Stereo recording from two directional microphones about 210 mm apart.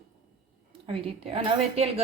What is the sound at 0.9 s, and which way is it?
A woman's voice, 25° right (ahead or behind).